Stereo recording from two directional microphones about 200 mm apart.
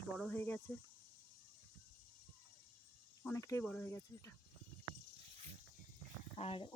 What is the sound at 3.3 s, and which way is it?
Speech, 15° left (ahead or behind).